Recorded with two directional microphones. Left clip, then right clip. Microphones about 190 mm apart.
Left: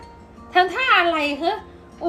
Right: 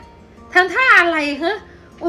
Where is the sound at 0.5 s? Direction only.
Centre (ahead or behind).